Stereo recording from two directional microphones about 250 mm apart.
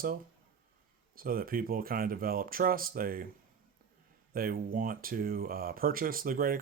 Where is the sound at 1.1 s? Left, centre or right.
Right.